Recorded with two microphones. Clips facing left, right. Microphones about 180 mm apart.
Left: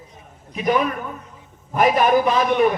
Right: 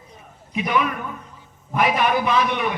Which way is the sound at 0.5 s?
40° left (ahead or behind).